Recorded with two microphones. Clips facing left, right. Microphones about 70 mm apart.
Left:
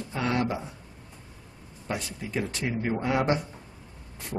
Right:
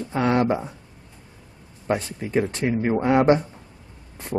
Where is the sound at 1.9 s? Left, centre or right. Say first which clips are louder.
Right 8 dB; right.